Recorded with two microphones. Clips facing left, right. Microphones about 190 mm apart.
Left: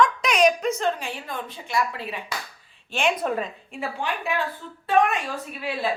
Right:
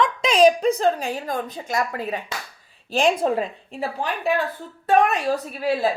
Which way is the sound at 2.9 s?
30° right (ahead or behind).